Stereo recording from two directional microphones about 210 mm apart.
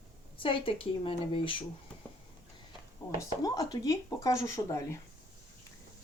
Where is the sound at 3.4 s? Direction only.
15° left (ahead or behind).